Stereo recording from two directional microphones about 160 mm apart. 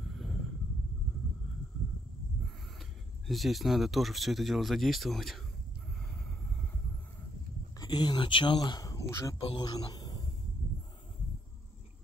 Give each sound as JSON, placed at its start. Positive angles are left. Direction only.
{"t": 3.3, "sound": "speech", "side_deg": 0}
{"t": 7.8, "sound": "speech", "side_deg": 25}
{"t": 9.4, "sound": "speech", "side_deg": 30}